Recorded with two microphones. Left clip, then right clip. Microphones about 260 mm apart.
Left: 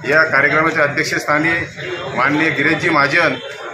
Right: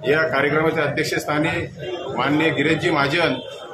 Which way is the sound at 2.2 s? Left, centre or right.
Centre.